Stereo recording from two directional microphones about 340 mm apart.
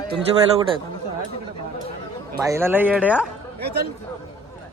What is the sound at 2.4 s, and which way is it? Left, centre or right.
Speech, centre.